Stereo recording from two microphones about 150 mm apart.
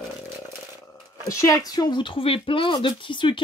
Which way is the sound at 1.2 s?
20° left (ahead or behind).